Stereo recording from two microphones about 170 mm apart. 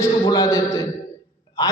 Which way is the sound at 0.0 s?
20° left (ahead or behind).